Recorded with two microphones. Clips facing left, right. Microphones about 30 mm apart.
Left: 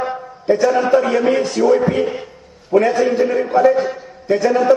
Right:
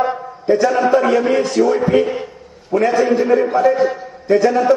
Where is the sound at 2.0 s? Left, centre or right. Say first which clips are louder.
Right 3 dB; centre.